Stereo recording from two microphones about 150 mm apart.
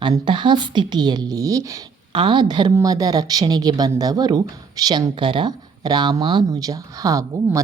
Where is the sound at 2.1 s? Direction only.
35° right (ahead or behind).